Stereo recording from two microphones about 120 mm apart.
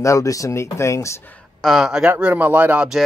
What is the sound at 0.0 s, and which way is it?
Speech, 25° left (ahead or behind).